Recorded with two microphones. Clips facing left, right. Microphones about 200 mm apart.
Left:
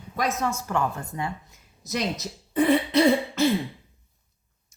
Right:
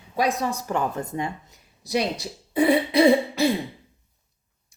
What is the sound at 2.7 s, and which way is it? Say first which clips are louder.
Speech: right 2 dB; 15° right (ahead or behind).